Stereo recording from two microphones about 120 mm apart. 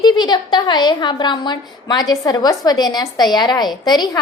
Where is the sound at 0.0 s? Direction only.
35° left (ahead or behind).